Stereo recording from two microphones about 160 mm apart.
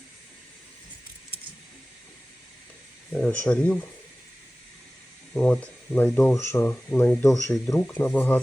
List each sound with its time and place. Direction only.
3.2 s speech: 5° left (ahead or behind)
5.3 s speech: 5° left (ahead or behind)